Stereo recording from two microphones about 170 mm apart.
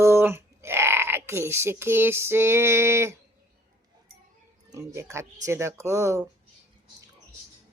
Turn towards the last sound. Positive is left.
turn(degrees=-20)  # may be behind; listen again after turning